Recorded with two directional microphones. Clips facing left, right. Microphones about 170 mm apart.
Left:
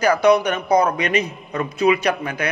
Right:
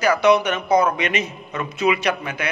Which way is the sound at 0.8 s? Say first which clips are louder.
Left 2 dB; 35° left (ahead or behind).